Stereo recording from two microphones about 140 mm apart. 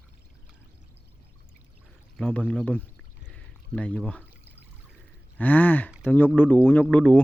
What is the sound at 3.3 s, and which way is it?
Pour, 10° left (ahead or behind).